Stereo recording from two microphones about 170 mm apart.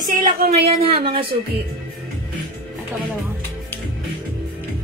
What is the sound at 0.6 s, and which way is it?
Speech, 35° right (ahead or behind).